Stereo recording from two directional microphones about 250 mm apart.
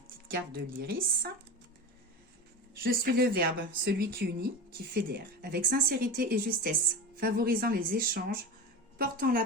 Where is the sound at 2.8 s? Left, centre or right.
Right.